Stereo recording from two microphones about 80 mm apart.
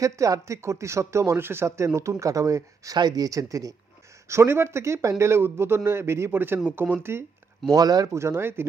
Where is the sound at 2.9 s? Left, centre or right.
Right.